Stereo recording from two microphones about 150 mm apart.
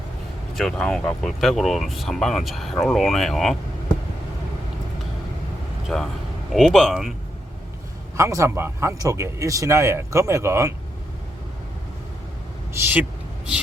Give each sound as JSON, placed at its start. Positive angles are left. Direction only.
{"t": 0.5, "sound": "speech", "side_deg": 0}
{"t": 5.9, "sound": "speech", "side_deg": 0}
{"t": 8.1, "sound": "speech", "side_deg": -20}
{"t": 12.7, "sound": "speech", "side_deg": -10}